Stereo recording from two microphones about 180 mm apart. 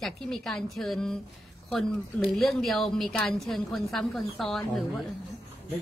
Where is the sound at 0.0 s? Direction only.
Centre (ahead or behind).